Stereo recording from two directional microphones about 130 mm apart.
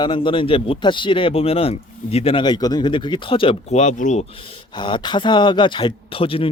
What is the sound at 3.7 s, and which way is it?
Speech, 65° left (ahead or behind).